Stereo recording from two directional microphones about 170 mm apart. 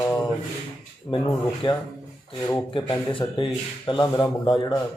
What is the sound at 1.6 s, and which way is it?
A man's voice, 30° left (ahead or behind).